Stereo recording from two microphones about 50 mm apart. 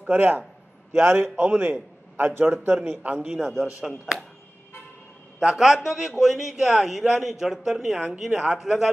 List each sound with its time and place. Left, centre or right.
0.0 s a man's voice: right
0.9 s a man's voice: right
3.3 s a man's voice: centre
5.4 s a man's voice: centre